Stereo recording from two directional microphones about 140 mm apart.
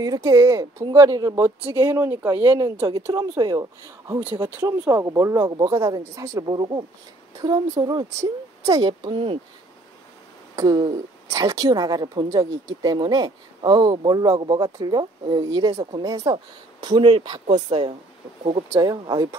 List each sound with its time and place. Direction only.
0.0 s a woman's voice: 25° right (ahead or behind)
1.6 s speech: 40° right (ahead or behind)
1.9 s a woman's voice: 20° right (ahead or behind)
6.4 s a woman's voice: 30° right (ahead or behind)
10.5 s a woman's voice: 25° right (ahead or behind)
16.8 s speech: 35° right (ahead or behind)
18.8 s a woman's voice: 30° right (ahead or behind)